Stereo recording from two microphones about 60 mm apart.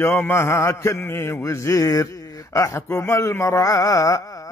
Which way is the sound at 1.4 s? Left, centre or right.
Left.